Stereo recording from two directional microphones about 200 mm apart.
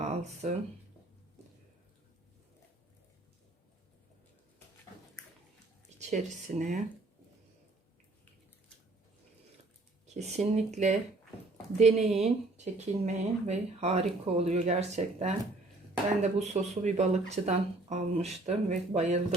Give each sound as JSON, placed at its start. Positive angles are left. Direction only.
{"t": 6.0, "sound": "speech", "side_deg": -35}
{"t": 10.2, "sound": "speech", "side_deg": -35}